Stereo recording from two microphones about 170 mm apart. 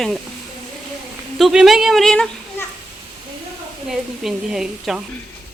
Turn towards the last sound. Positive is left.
turn(degrees=-5)  # may be behind; listen again after turning